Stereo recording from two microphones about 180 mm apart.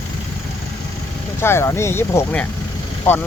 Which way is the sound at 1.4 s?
15° left (ahead or behind).